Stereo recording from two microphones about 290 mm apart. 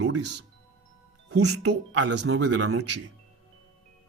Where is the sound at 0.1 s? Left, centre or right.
Right.